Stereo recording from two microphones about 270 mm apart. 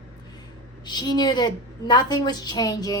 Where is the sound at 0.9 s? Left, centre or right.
Centre.